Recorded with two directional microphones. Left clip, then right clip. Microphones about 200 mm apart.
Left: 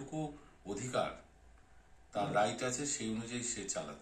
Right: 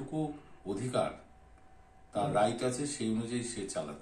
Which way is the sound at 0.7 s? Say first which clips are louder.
Right 4 dB; centre (ahead or behind).